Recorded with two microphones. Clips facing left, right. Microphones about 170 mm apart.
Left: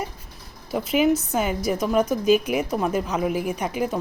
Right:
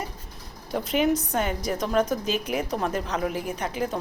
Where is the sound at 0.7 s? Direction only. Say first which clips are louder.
Left 3 dB; 5° left (ahead or behind).